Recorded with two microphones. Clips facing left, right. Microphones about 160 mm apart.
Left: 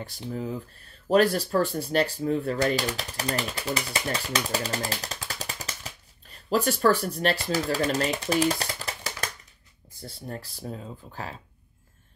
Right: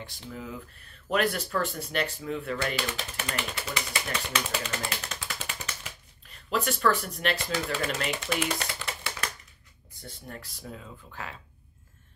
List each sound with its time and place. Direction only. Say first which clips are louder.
0.3 s speech: left 7 dB; 35° left (ahead or behind)